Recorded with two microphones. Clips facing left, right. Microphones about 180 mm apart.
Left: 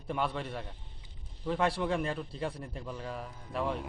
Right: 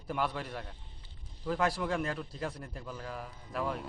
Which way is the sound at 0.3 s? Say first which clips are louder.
Left 2 dB; centre (ahead or behind).